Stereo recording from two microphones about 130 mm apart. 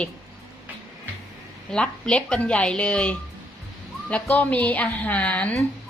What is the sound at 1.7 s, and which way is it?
A woman's voice, 10° left (ahead or behind).